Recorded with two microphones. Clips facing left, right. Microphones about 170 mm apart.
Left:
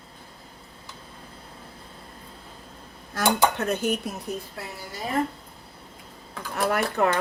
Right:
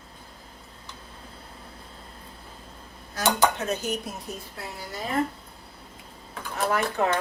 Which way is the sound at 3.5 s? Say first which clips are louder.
Left 3 dB; 60° left (ahead or behind).